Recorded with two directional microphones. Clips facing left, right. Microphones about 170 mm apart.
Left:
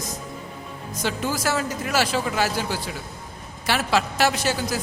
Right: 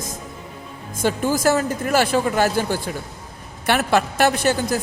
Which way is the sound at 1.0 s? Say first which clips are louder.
Right 7 dB; 50° right (ahead or behind).